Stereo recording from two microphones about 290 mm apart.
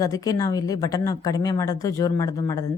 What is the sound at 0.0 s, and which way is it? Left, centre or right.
Speech, centre.